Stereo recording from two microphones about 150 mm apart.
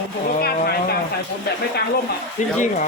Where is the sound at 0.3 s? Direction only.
90° left.